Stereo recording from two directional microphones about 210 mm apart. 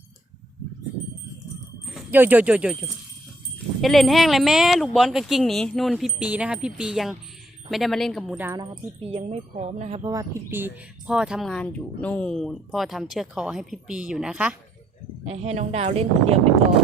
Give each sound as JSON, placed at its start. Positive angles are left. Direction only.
{"t": 1.9, "sound": "speech", "side_deg": -5}
{"t": 8.7, "sound": "speech", "side_deg": -25}
{"t": 10.0, "sound": "speech", "side_deg": -15}
{"t": 15.3, "sound": "speech", "side_deg": -30}